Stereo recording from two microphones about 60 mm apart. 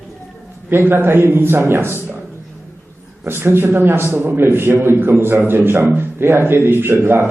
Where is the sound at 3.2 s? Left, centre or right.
Right.